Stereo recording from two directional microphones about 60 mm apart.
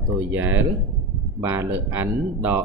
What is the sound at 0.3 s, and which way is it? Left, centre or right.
Speech, right.